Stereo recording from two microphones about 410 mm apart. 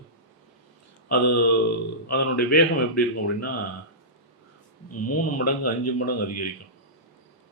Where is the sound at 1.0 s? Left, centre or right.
Left.